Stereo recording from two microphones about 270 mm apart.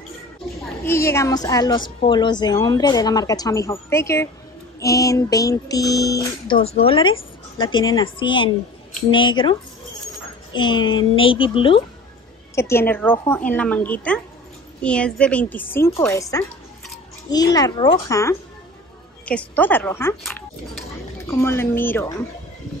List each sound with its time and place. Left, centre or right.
0.8 s music: centre
11.1 s speech: centre
12.5 s music: centre
13.5 s a woman's voice: centre
17.3 s music: centre